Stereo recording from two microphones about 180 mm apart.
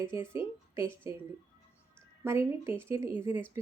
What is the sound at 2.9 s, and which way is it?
Speech, 15° right (ahead or behind).